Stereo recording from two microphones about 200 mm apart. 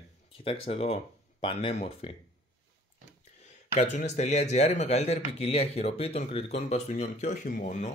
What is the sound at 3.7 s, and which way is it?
Speech, 35° left (ahead or behind).